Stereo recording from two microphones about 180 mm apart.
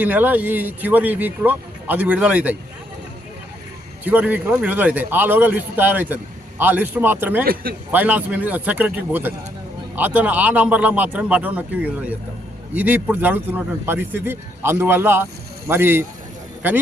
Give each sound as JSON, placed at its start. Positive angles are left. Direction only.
{"t": 0.0, "sound": "a man's voice", "side_deg": -10}
{"t": 4.0, "sound": "a man's voice", "side_deg": -10}
{"t": 7.4, "sound": "speech", "side_deg": -55}
{"t": 7.9, "sound": "a man's voice", "side_deg": -10}